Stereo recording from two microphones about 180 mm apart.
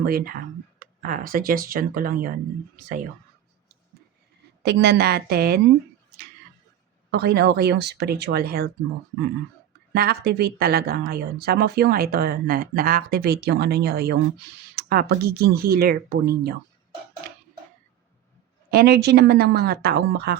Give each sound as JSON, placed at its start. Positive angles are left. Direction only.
{"t": 0.0, "sound": "speech", "side_deg": -55}
{"t": 4.6, "sound": "speech", "side_deg": -70}
{"t": 7.1, "sound": "speech", "side_deg": -65}
{"t": 9.9, "sound": "speech", "side_deg": -60}
{"t": 18.7, "sound": "speech", "side_deg": -60}